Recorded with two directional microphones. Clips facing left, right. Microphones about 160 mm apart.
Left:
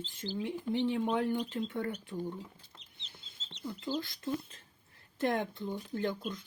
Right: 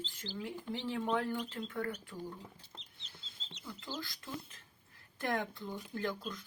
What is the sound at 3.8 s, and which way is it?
Speech, 20° left (ahead or behind).